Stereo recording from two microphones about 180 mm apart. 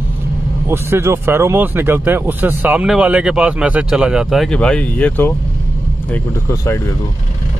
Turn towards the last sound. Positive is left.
turn(degrees=15)  # may be behind; listen again after turning